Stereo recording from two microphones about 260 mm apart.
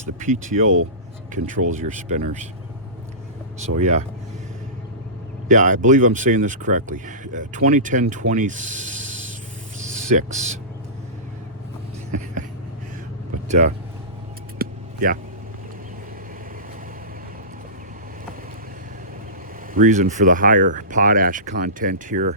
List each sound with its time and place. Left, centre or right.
0.0 s speech: right
3.6 s speech: right
5.5 s speech: right
9.7 s a sound: right
12.1 s a sound: right
13.5 s speech: right
14.6 s vehicle: right
19.7 s speech: right